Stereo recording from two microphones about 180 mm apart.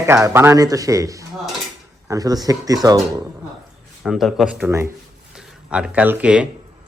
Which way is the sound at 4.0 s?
Centre (ahead or behind).